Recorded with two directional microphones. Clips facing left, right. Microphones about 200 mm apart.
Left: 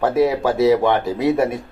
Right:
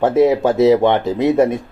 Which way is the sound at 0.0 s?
20° right (ahead or behind).